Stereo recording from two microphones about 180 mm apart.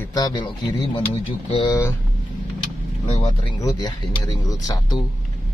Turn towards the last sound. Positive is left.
turn(degrees=20)  # may be behind; listen again after turning